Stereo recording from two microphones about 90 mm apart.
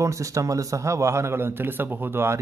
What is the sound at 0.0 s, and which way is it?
Speech, 35° right (ahead or behind).